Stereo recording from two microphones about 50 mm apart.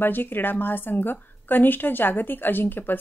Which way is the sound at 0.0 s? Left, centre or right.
Left.